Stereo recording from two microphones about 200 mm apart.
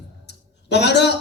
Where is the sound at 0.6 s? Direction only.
60° left (ahead or behind).